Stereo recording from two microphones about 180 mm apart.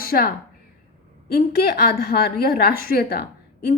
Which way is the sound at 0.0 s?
55° left (ahead or behind).